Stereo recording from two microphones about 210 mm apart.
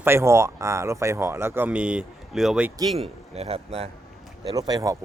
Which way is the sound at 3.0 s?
30° right (ahead or behind).